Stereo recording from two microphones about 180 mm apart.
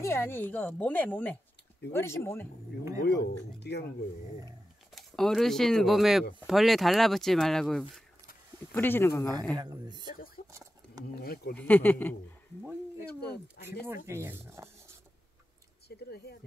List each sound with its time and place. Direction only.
0.0 s a woman's voice: 15° left (ahead or behind)
3.0 s speech: 65° left (ahead or behind)
4.9 s a woman's voice: centre (ahead or behind)
9.6 s speech: 25° right (ahead or behind)
10.1 s speech: 55° left (ahead or behind)
10.5 s patter: 15° right (ahead or behind)
11.1 s speech: 60° left (ahead or behind)
11.5 s a woman's voice: 10° left (ahead or behind)
14.0 s speech: 15° right (ahead or behind)
16.0 s speech: 60° left (ahead or behind)